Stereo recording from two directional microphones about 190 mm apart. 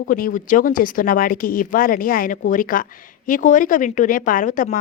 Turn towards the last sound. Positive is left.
turn(degrees=45)  # may be behind; listen again after turning